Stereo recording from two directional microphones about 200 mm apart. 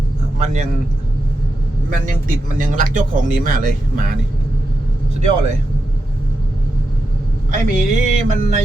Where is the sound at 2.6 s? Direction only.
40° right (ahead or behind).